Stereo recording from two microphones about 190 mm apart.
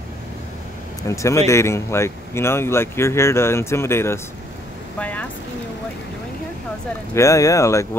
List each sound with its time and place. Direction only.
1.0 s speech: 15° left (ahead or behind)
4.9 s vehicle: 10° left (ahead or behind)
7.2 s speech: 15° left (ahead or behind)